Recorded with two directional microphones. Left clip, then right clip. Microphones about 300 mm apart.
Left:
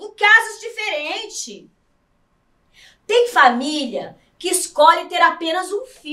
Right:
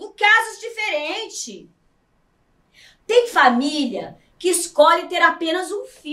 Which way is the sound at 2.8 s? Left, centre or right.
Centre.